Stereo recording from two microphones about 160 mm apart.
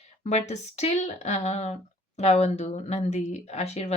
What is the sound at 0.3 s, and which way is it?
A woman's voice, 45° left (ahead or behind).